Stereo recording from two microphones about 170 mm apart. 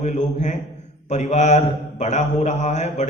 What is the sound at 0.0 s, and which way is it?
A man's voice, 45° left (ahead or behind).